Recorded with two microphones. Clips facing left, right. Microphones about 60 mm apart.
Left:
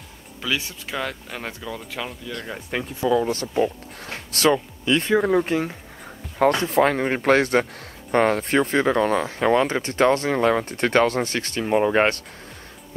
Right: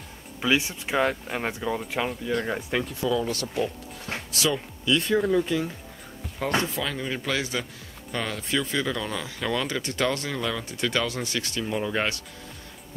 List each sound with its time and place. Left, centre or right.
0.4 s speech: right
3.2 s speech: left
4.3 s speech: left
4.8 s speech: left
5.3 s speech: left